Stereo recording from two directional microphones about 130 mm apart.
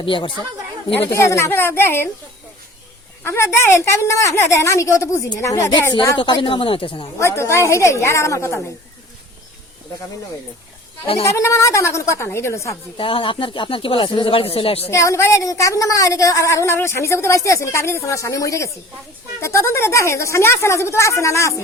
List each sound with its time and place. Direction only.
0.0 s speech: 40° left (ahead or behind)
1.1 s a woman's voice: 20° left (ahead or behind)
3.2 s a woman's voice: 20° left (ahead or behind)
6.1 s speech: 35° left (ahead or behind)
7.2 s a woman's voice: 20° left (ahead or behind)
11.3 s a woman's voice: 20° left (ahead or behind)
13.0 s speech: 40° left (ahead or behind)
14.8 s a woman's voice: 20° left (ahead or behind)